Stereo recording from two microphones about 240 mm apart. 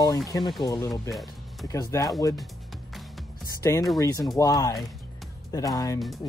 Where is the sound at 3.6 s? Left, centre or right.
Centre.